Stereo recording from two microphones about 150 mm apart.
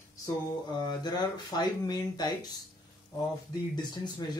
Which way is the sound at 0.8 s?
25° left (ahead or behind).